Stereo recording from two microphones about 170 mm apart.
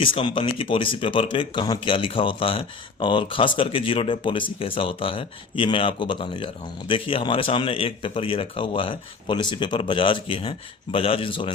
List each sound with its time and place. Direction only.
0.0 s speech: 30° left (ahead or behind)